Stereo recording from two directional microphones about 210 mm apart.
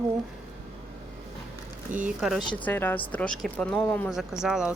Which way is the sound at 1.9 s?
40° right (ahead or behind).